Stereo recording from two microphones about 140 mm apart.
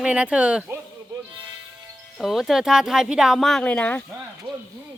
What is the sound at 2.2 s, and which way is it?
Speech, centre (ahead or behind).